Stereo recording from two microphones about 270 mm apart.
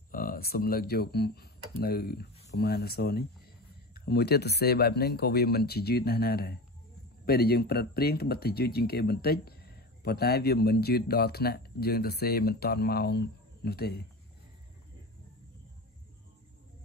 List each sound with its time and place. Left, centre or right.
0.1 s speech: left